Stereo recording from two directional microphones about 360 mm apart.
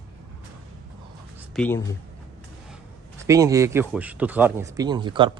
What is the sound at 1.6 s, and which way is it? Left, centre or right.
Speech, centre.